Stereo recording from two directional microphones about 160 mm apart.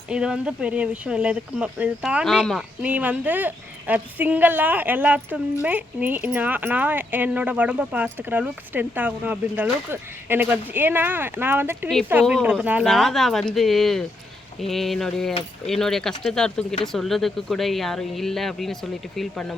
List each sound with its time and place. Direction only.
0.1 s speech: 5° right (ahead or behind)
12.2 s speech: 5° right (ahead or behind)